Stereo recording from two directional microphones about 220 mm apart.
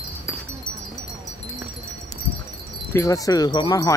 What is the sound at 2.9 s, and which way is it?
Wind chime, 15° left (ahead or behind).